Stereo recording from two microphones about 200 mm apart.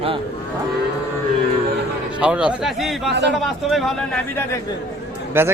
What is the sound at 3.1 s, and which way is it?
Speech, 60° right (ahead or behind).